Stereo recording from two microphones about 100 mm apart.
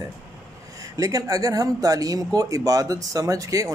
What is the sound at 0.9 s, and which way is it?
Speech, 35° right (ahead or behind).